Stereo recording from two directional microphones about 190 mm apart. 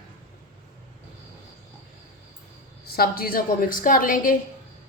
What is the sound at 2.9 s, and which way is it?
A woman's voice, 50° left (ahead or behind).